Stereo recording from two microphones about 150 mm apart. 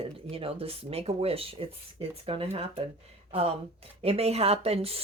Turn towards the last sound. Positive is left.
turn(degrees=-40)  # may be behind; listen again after turning